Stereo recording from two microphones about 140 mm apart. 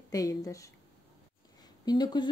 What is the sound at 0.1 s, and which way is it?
Speech, 25° left (ahead or behind).